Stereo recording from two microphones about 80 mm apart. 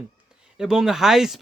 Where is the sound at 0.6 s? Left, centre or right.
Centre.